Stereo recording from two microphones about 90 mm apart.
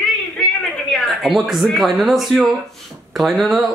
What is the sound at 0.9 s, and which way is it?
Speech, 5° left (ahead or behind).